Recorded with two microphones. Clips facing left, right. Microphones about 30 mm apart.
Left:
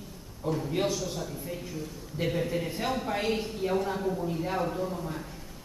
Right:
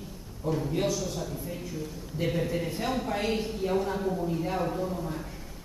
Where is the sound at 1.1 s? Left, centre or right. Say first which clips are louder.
Right 1 dB; centre.